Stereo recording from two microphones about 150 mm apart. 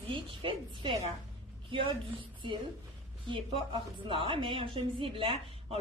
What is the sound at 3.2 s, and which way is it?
A woman's voice, 35° right (ahead or behind).